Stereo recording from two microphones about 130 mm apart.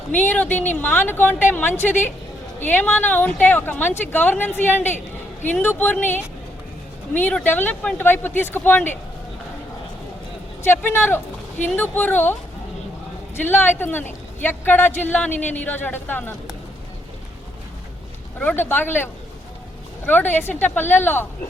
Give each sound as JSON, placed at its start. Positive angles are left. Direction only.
{"t": 0.1, "sound": "speech", "side_deg": 15}
{"t": 10.6, "sound": "speech", "side_deg": 15}
{"t": 18.3, "sound": "speech", "side_deg": 15}